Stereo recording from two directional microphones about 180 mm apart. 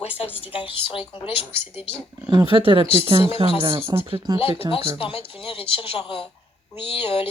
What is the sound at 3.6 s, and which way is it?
Speech, 30° right (ahead or behind).